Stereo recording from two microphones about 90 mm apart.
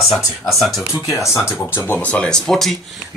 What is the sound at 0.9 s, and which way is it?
Speech, 35° left (ahead or behind).